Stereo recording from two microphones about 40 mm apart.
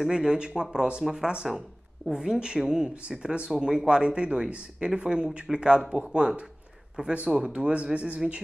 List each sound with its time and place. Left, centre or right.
0.1 s speech: right